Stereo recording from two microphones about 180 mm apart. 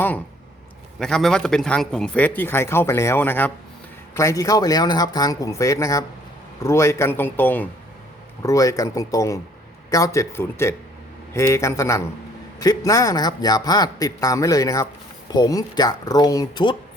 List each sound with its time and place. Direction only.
0.9 s a man's voice: centre (ahead or behind); by 16.7 s 20° left (ahead or behind)